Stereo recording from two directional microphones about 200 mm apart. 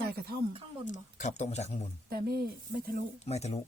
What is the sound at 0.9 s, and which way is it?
Speech, 40° left (ahead or behind).